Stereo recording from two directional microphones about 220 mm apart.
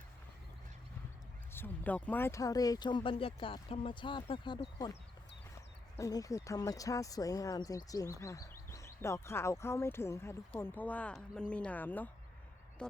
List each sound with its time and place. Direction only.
1.5 s speech: 10° left (ahead or behind)
6.0 s speech: 15° left (ahead or behind)